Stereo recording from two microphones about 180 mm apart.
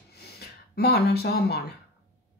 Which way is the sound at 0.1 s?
60° left (ahead or behind).